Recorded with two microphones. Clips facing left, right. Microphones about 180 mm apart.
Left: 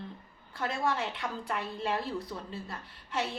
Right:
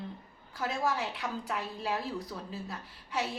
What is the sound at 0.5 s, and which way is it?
A woman's voice, centre (ahead or behind).